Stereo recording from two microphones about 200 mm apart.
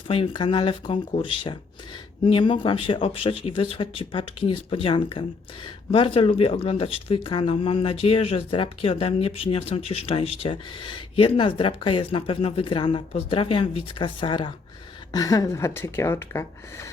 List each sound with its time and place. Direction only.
0.1 s speech: 25° left (ahead or behind)